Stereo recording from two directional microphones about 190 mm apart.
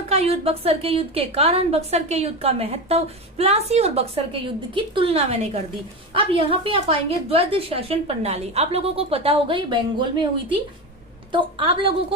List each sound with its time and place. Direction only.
0.1 s a woman's voice: 30° right (ahead or behind)
11.3 s a woman's voice: 25° right (ahead or behind)